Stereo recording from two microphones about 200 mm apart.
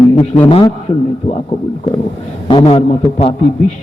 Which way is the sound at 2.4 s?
25° left (ahead or behind).